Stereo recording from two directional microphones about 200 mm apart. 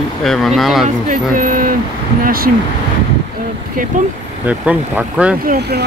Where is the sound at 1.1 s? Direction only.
40° right (ahead or behind).